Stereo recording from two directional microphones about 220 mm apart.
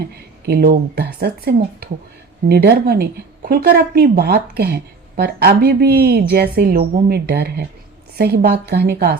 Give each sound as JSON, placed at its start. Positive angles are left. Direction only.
{"t": 0.4, "sound": "a woman's voice", "side_deg": -45}